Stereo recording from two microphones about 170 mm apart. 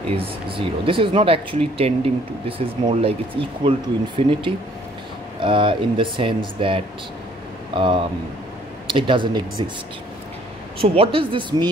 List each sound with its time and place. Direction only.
0.1 s speech: 30° right (ahead or behind)
10.8 s speech: 30° right (ahead or behind)